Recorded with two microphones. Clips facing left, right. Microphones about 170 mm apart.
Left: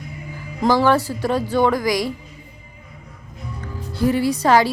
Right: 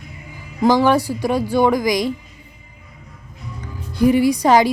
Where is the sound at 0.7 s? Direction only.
15° right (ahead or behind).